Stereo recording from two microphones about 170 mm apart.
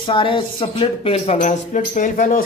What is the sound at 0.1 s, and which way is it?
Speech, 30° left (ahead or behind).